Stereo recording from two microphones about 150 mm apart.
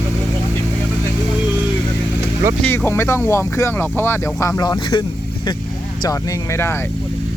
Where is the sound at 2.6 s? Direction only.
15° left (ahead or behind).